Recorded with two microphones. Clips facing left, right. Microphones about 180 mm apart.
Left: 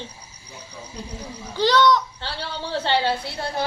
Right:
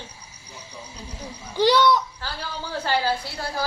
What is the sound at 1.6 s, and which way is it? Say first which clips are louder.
Speech: even; 10° right (ahead or behind).